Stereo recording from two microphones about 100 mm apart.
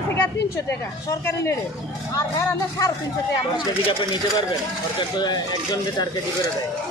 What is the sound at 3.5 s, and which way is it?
Speech, 45° left (ahead or behind).